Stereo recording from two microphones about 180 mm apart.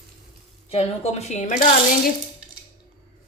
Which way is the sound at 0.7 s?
35° left (ahead or behind).